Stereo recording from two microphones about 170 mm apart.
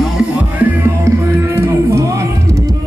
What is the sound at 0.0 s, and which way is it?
Music, 5° right (ahead or behind).